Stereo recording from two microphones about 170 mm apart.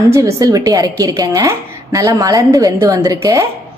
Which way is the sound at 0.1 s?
20° right (ahead or behind).